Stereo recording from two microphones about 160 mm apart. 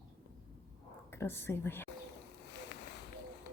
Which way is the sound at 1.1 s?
15° left (ahead or behind).